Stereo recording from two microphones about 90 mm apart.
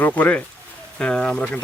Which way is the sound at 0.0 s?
15° left (ahead or behind).